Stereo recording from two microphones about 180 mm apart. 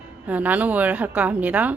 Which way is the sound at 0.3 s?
10° right (ahead or behind).